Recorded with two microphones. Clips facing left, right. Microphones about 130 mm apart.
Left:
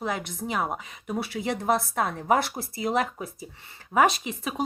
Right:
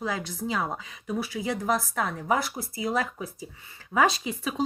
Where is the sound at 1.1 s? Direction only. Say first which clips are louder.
Left 1 dB; 25° left (ahead or behind).